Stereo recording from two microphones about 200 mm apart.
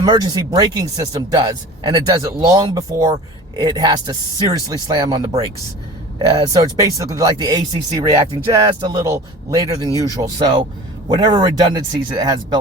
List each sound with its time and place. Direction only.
0.0 s speech: 20° right (ahead or behind)
9.9 s speech: 15° left (ahead or behind)
10.2 s speech: 20° right (ahead or behind)